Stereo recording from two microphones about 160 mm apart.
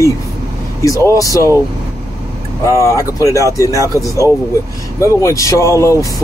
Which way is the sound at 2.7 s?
20° left (ahead or behind).